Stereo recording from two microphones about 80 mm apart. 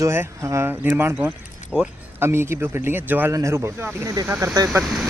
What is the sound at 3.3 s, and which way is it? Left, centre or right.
Speech, right.